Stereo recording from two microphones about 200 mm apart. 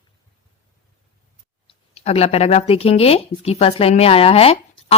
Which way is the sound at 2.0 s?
30° left (ahead or behind).